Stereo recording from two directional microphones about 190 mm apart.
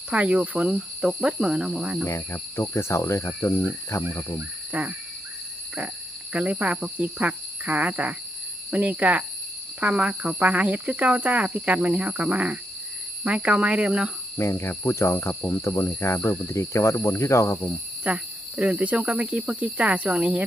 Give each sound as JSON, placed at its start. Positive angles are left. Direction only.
{"t": 0.1, "sound": "speech", "side_deg": -5}
{"t": 2.0, "sound": "speech", "side_deg": 15}
{"t": 4.7, "sound": "a sound", "side_deg": -10}
{"t": 6.3, "sound": "speech", "side_deg": -5}
{"t": 14.3, "sound": "speech", "side_deg": 15}
{"t": 18.0, "sound": "speech", "side_deg": -5}